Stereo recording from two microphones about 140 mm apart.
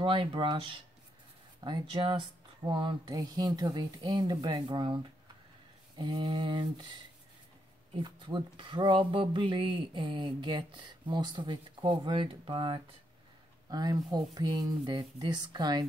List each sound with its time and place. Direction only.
0.0 s speech: 40° right (ahead or behind)
7.9 s speech: 35° right (ahead or behind)